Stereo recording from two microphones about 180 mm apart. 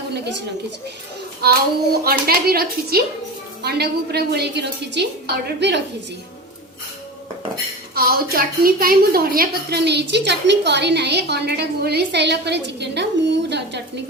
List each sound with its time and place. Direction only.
1.4 s a woman's voice: 60° right (ahead or behind)
7.9 s a woman's voice: 60° right (ahead or behind)